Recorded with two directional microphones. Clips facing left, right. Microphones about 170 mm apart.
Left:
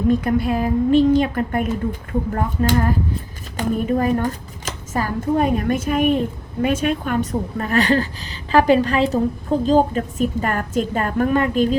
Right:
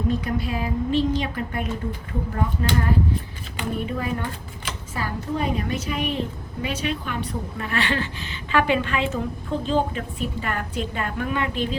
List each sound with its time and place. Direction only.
0.3 s a woman's voice: 50° left (ahead or behind)